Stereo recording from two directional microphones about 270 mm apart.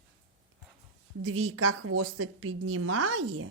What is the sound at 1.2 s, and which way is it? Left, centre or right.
Speech, right.